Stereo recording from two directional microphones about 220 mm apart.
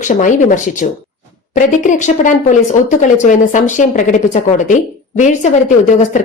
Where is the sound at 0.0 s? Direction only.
35° left (ahead or behind).